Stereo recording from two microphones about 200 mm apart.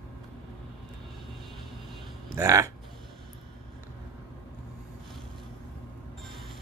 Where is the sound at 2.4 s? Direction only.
15° right (ahead or behind).